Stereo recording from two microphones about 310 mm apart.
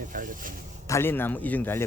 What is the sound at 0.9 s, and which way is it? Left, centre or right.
Speech, centre.